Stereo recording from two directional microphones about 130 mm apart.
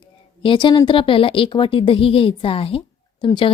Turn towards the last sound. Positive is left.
turn(degrees=40)  # may be behind; listen again after turning